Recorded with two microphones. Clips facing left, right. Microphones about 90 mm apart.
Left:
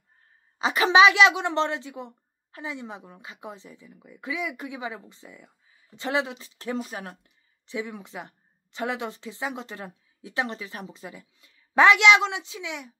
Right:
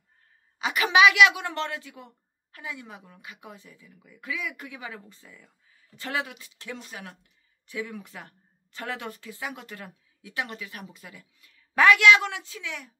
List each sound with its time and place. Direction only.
0.6 s a woman's voice: 30° left (ahead or behind)
7.6 s a woman's voice: 20° left (ahead or behind)